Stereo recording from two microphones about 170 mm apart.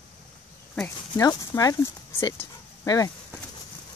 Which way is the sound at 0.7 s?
15° left (ahead or behind).